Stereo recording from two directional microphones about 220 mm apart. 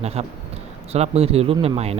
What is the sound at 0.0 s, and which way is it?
A man's voice, 30° right (ahead or behind).